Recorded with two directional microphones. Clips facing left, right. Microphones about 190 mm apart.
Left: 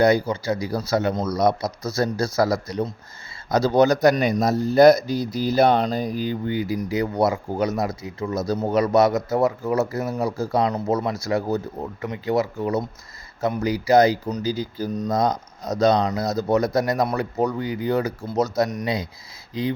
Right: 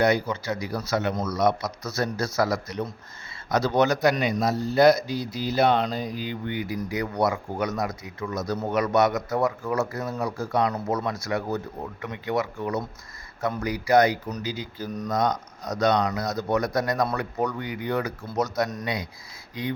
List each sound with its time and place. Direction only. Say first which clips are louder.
0.0 s speech: left 4 dB; 35° left (ahead or behind)
14.4 s speech: left 7 dB; 35° left (ahead or behind)